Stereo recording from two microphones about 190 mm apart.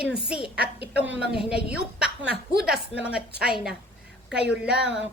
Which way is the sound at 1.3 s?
5° right (ahead or behind).